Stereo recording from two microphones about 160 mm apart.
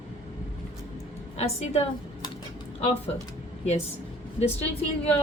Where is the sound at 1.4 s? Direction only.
40° left (ahead or behind).